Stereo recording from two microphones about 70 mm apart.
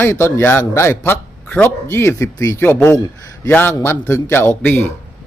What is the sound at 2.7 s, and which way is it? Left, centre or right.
A man's voice, left.